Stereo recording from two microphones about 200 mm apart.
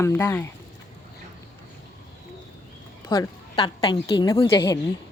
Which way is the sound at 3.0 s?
20° left (ahead or behind).